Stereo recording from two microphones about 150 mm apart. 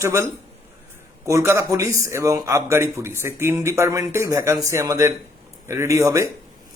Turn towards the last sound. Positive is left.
turn(degrees=-20)  # may be behind; listen again after turning